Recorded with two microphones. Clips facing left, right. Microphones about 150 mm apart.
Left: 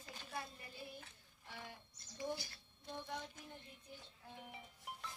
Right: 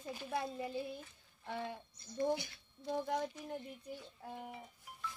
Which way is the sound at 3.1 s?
70° right (ahead or behind).